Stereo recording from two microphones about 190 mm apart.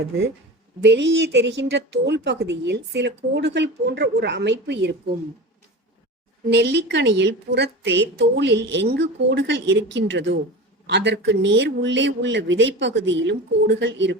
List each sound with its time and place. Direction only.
0.8 s a woman's voice: 70° right (ahead or behind)
6.5 s a woman's voice: 60° right (ahead or behind)